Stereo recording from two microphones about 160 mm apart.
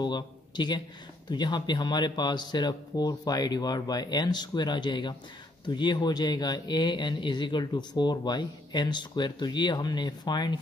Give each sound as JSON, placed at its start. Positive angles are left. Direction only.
{"t": 0.0, "sound": "a man's voice", "side_deg": 30}